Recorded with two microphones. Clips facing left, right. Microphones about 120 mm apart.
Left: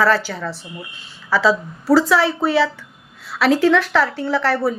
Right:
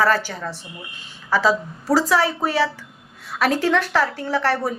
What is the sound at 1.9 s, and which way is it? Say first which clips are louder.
A woman's voice: left 3 dB; 40° right (ahead or behind).